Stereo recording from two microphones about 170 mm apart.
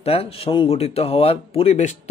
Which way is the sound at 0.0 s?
35° left (ahead or behind).